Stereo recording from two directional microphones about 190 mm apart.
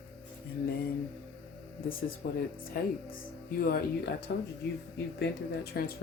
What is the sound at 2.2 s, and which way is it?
Speech, 50° left (ahead or behind).